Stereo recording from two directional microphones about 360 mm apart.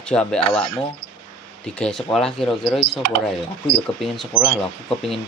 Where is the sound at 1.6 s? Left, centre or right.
Centre.